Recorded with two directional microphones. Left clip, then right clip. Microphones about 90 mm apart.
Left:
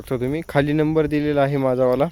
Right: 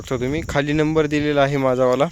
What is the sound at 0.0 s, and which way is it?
Speech, 20° left (ahead or behind).